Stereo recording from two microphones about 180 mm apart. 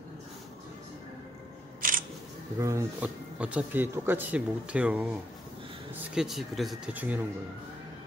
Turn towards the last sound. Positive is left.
turn(degrees=-10)  # may be behind; listen again after turning